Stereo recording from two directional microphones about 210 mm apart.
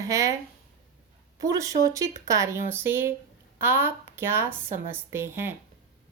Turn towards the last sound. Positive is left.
turn(degrees=-10)  # may be behind; listen again after turning